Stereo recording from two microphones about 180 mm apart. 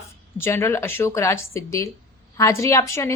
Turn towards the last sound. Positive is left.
turn(degrees=15)  # may be behind; listen again after turning